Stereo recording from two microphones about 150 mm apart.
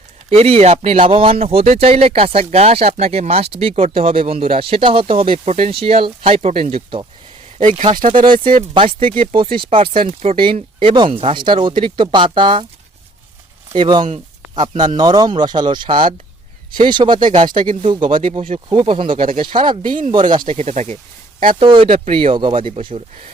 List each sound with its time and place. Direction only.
0.3 s speech: 40° right (ahead or behind)
0.9 s speech: 35° right (ahead or behind)
7.9 s speech: 65° right (ahead or behind)
8.7 s speech: 35° right (ahead or behind)
13.7 s speech: 30° right (ahead or behind)
20.5 s speech: 50° right (ahead or behind)
21.6 s speech: 35° right (ahead or behind)